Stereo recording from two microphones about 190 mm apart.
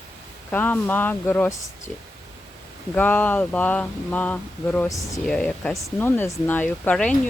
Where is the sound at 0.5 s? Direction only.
10° left (ahead or behind).